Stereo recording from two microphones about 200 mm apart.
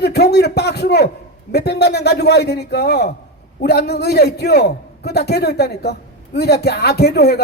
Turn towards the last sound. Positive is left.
turn(degrees=55)  # may be behind; listen again after turning